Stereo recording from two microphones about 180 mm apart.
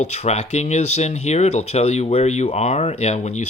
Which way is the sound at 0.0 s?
40° left (ahead or behind).